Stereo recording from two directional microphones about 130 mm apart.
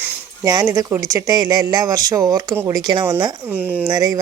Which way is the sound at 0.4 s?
30° right (ahead or behind).